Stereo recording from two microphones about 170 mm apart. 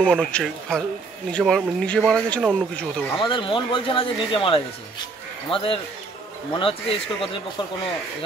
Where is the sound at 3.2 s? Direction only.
30° left (ahead or behind).